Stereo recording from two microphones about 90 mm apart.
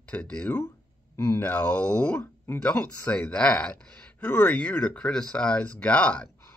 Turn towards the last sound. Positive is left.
turn(degrees=15)  # may be behind; listen again after turning